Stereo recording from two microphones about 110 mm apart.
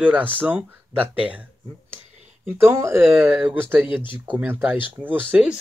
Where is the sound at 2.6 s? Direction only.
25° right (ahead or behind).